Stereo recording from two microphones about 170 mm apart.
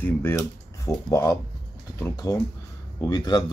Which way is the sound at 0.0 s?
15° left (ahead or behind).